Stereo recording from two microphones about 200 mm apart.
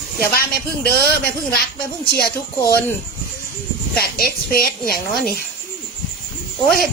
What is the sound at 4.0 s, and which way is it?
A woman's voice, 50° left (ahead or behind).